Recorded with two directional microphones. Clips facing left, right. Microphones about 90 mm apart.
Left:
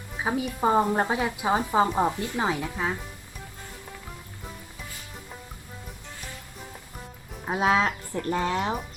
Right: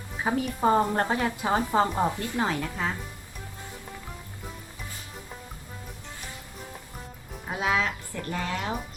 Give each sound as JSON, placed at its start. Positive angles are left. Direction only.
{"t": 0.3, "sound": "a woman's voice", "side_deg": 10}
{"t": 7.4, "sound": "speech", "side_deg": 30}